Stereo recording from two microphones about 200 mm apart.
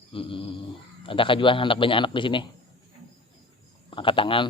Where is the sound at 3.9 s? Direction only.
25° left (ahead or behind).